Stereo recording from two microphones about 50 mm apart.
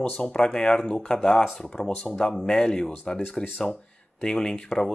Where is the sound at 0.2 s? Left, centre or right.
Centre.